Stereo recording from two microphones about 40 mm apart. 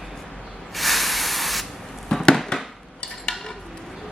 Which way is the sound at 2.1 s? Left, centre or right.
Centre.